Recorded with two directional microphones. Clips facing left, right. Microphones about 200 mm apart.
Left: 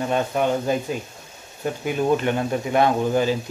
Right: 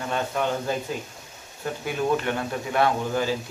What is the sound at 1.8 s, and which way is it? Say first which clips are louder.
Speech: left 4 dB; 20° left (ahead or behind).